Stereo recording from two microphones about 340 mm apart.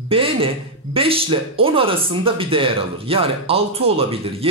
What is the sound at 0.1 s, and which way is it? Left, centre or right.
Speech, centre.